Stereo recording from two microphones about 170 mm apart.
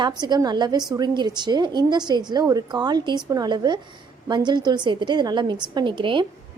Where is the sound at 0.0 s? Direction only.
25° right (ahead or behind).